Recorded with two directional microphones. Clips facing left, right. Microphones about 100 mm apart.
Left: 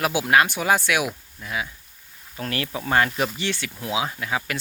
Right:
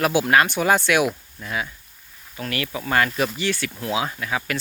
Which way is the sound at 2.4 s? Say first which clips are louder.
Even; 30° left (ahead or behind).